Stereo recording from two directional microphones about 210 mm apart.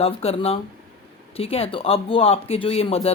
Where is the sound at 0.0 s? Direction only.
30° left (ahead or behind).